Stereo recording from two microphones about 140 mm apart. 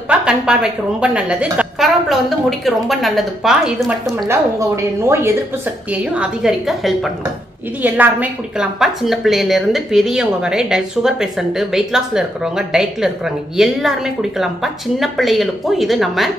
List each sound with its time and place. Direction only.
0.1 s a woman's voice: 5° right (ahead or behind)
4.3 s a woman's voice: 20° right (ahead or behind)
5.9 s a woman's voice: 5° right (ahead or behind)
7.8 s a woman's voice: 10° right (ahead or behind)